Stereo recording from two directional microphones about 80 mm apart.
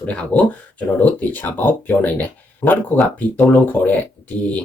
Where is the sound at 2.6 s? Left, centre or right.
Left.